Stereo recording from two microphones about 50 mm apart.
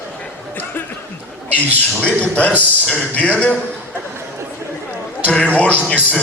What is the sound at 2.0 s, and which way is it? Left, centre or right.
Speech, left.